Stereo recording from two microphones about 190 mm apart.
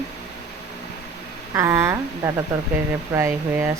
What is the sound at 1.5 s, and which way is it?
Speech, 15° right (ahead or behind).